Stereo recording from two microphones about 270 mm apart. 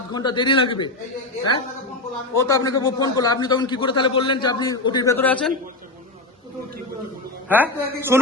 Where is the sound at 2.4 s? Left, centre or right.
Centre.